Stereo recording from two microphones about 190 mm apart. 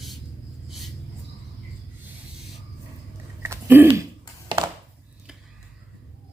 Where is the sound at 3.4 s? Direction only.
10° right (ahead or behind).